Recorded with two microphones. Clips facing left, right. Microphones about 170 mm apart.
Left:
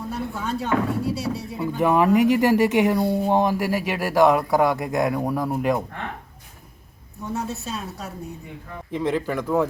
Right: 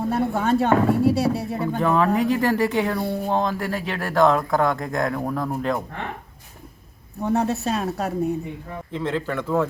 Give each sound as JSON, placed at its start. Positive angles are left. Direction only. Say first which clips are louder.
{"t": 0.0, "sound": "speech", "louder": "right 7 dB", "side_deg": -60}
{"t": 1.8, "sound": "speech", "louder": "left 3 dB", "side_deg": 15}
{"t": 7.2, "sound": "speech", "louder": "right 7 dB", "side_deg": -65}
{"t": 8.9, "sound": "speech", "louder": "left 2 dB", "side_deg": 15}